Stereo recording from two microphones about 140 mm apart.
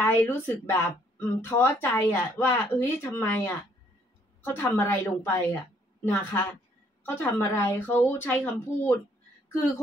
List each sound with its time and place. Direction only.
0.0 s speech: 15° left (ahead or behind)
4.6 s speech: 20° left (ahead or behind)